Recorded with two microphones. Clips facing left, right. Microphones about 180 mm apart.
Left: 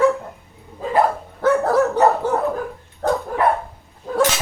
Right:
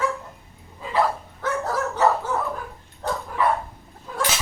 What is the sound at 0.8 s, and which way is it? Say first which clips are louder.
Dog: left 5 dB; 45° left (ahead or behind).